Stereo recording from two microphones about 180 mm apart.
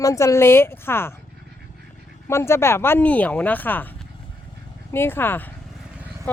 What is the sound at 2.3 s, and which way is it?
A woman's voice, 15° left (ahead or behind).